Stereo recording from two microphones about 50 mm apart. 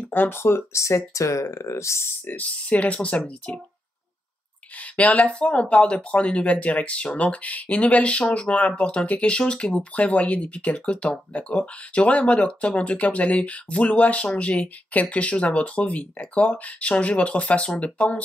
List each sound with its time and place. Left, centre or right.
0.1 s speech: left
2.2 s speech: left
4.7 s speech: left